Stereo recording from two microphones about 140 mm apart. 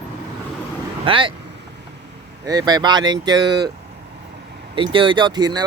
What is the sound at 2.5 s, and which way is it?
Speech, 30° right (ahead or behind).